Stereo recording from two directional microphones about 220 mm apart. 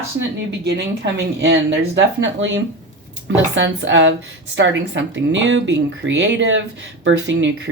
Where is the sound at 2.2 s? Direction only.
55° right (ahead or behind).